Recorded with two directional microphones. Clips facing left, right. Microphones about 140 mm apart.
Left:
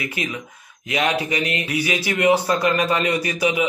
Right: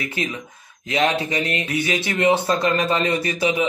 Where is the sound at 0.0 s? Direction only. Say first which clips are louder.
Right 1 dB; 25° right (ahead or behind).